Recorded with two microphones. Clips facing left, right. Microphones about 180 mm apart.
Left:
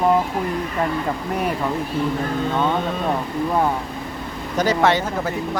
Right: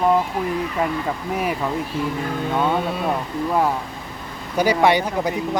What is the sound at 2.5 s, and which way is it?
Speech, 10° right (ahead or behind).